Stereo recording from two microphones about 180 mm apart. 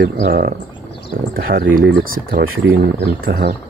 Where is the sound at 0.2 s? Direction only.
55° right (ahead or behind).